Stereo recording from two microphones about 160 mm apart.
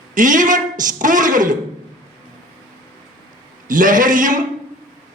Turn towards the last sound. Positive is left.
turn(degrees=-55)  # may be behind; listen again after turning